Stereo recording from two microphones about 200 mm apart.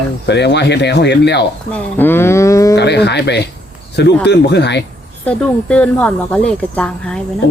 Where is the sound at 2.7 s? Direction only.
55° left (ahead or behind).